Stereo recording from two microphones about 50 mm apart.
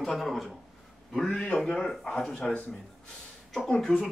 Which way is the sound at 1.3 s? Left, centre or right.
Centre.